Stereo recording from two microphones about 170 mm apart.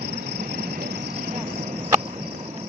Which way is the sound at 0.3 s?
75° right (ahead or behind).